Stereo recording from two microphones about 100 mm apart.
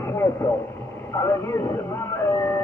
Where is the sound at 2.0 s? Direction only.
25° left (ahead or behind).